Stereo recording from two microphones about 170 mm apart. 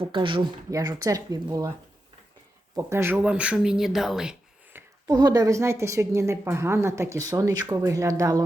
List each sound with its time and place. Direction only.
0.0 s speech: 30° right (ahead or behind)
2.7 s speech: 15° right (ahead or behind)
5.0 s speech: 20° right (ahead or behind)